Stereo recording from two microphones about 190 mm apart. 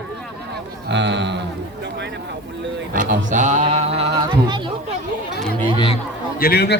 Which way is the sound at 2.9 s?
45° right (ahead or behind).